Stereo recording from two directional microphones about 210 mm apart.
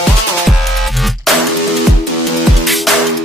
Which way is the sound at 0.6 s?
Centre (ahead or behind).